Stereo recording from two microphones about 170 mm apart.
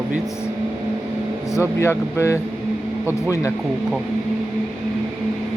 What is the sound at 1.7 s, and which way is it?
Speech, 15° left (ahead or behind).